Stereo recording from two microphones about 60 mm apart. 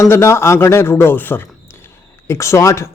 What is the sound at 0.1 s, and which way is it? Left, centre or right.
A man's voice, left.